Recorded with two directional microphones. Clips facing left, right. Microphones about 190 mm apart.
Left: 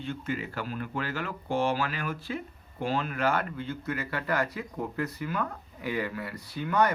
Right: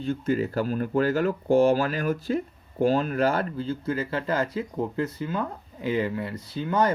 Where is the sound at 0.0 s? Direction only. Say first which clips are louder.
Right 8 dB; 40° right (ahead or behind).